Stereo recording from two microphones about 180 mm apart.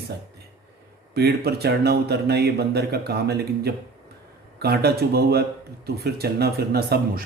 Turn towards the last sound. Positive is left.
turn(degrees=-60)  # may be behind; listen again after turning